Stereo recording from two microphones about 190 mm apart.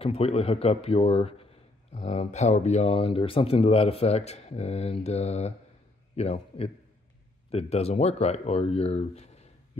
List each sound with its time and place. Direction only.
0.0 s speech: 30° left (ahead or behind)